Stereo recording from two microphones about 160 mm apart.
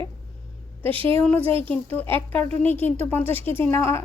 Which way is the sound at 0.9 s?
35° right (ahead or behind).